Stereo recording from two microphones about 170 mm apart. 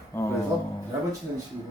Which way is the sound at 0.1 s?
20° left (ahead or behind).